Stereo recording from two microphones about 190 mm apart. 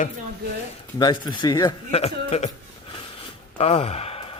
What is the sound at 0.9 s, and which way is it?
Speech, 25° left (ahead or behind).